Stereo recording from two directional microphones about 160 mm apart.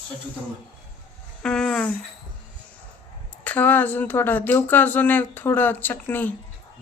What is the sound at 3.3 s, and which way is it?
Speech, 10° left (ahead or behind).